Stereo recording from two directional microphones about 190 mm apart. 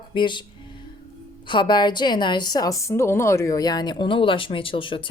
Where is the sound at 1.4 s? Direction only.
25° left (ahead or behind).